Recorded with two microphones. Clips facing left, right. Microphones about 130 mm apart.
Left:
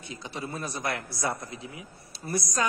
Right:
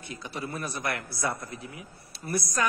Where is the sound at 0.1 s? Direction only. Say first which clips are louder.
Even; 20° left (ahead or behind).